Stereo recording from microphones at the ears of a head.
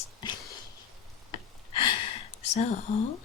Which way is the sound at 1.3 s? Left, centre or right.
Left.